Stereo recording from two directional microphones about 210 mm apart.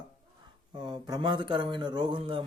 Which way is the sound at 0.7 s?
20° right (ahead or behind).